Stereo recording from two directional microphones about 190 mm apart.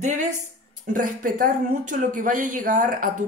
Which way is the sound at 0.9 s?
45° right (ahead or behind).